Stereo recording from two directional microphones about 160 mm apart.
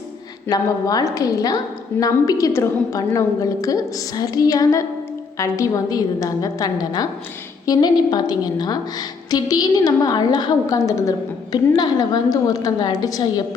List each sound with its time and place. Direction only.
0.4 s a woman's voice: 25° left (ahead or behind)